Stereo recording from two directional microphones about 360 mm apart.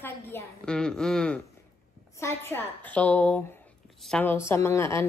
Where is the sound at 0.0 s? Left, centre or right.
Centre.